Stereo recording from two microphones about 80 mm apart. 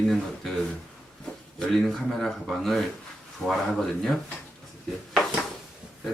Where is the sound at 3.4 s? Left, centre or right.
Centre.